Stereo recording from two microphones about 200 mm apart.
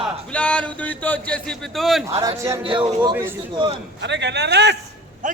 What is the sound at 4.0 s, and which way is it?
Speech, 60° right (ahead or behind).